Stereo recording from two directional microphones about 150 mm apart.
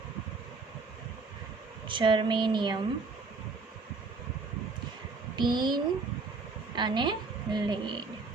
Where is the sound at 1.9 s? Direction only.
35° right (ahead or behind).